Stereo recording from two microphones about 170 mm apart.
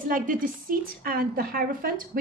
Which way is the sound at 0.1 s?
55° right (ahead or behind).